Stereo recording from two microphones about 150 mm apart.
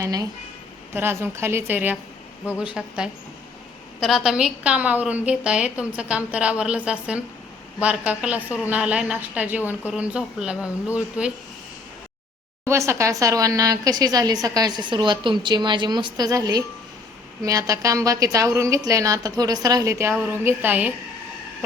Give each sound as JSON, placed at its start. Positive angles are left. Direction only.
{"t": 0.0, "sound": "a woman's voice", "side_deg": -25}
{"t": 12.6, "sound": "speech", "side_deg": -20}